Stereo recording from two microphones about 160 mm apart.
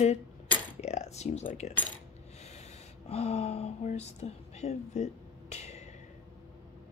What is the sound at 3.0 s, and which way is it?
Speech, 40° left (ahead or behind).